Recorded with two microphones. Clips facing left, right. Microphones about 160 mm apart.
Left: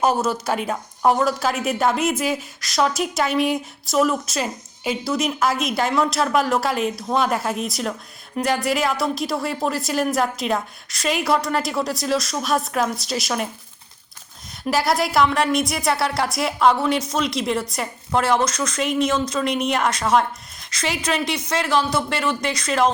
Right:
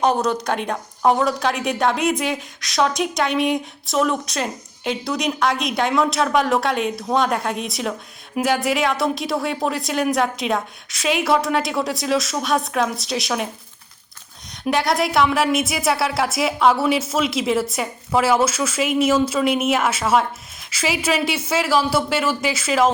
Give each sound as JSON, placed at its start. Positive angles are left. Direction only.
{"t": 0.0, "sound": "speech", "side_deg": 5}
{"t": 14.6, "sound": "speech", "side_deg": 0}